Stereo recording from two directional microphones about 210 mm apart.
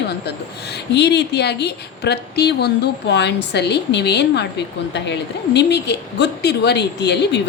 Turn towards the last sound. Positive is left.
turn(degrees=55)  # may be behind; listen again after turning